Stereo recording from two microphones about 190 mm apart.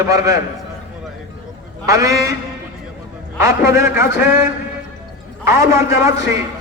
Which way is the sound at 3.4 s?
15° right (ahead or behind).